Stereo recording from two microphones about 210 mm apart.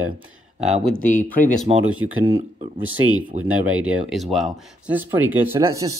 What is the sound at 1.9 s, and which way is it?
Speech, 75° right (ahead or behind).